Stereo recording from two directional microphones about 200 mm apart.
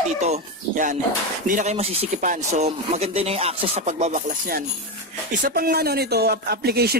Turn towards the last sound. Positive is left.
turn(degrees=-55)  # may be behind; listen again after turning